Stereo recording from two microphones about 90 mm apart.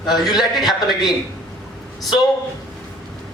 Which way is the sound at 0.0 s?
50° left (ahead or behind).